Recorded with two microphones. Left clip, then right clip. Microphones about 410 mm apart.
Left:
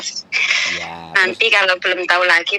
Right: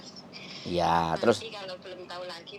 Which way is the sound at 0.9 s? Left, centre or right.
Right.